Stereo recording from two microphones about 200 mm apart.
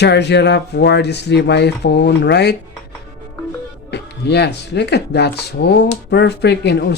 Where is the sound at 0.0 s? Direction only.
60° left (ahead or behind).